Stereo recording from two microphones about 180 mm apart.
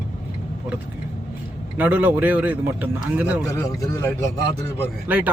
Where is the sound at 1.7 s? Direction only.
10° right (ahead or behind).